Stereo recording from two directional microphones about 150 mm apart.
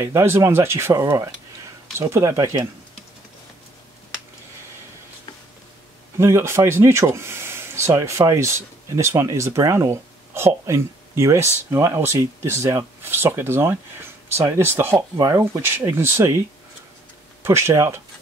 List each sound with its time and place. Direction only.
0.0 s speech: 20° right (ahead or behind)
6.1 s speech: 20° right (ahead or behind)